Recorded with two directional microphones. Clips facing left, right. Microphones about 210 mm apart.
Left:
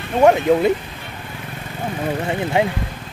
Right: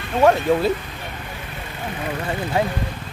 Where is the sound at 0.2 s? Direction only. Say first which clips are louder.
Left 3 dB; 20° left (ahead or behind).